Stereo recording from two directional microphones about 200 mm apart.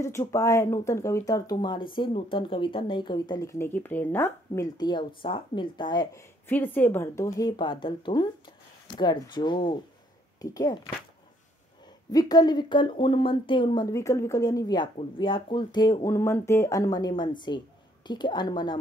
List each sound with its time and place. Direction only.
0.0 s speech: 15° left (ahead or behind)
6.4 s speech: 10° left (ahead or behind)
12.1 s speech: 20° left (ahead or behind)